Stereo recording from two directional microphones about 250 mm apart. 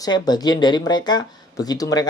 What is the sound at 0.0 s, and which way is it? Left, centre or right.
Speech, centre.